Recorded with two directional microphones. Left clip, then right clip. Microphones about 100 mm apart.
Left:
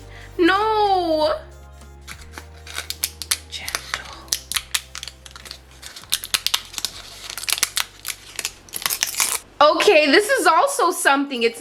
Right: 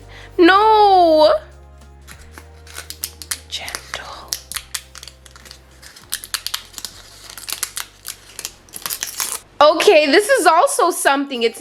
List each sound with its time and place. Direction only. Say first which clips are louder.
0.1 s music: right 6 dB; 35° right (ahead or behind)
2.0 s shuffling cards: left 3 dB; centre (ahead or behind)
6.3 s crumpling: left 4 dB; 5° left (ahead or behind)
9.6 s a woman's voice: right 3 dB; 25° right (ahead or behind)